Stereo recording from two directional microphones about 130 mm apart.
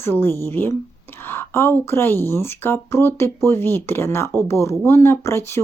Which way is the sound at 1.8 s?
20° left (ahead or behind).